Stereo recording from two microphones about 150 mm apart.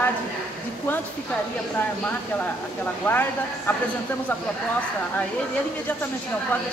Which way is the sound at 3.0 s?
15° left (ahead or behind).